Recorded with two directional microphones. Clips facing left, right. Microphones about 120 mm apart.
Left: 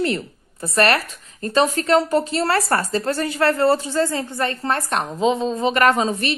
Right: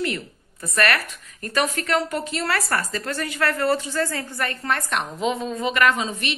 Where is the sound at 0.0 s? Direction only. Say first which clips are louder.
Left 5 dB; 30° left (ahead or behind).